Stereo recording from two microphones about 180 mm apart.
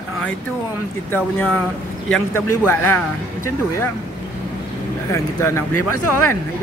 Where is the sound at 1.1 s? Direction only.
5° left (ahead or behind).